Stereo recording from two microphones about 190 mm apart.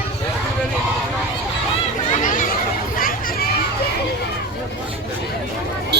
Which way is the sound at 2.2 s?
45° left (ahead or behind).